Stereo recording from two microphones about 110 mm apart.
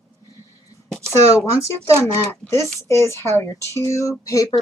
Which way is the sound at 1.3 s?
25° left (ahead or behind).